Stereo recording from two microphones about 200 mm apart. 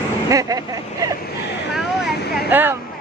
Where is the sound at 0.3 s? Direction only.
15° right (ahead or behind).